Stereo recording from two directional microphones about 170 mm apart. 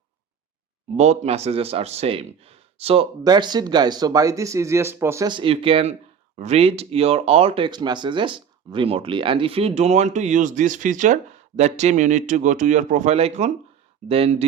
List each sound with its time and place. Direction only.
0.9 s speech: 40° right (ahead or behind)